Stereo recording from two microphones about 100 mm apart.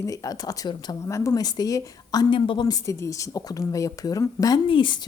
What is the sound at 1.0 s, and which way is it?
A woman's voice, 30° left (ahead or behind).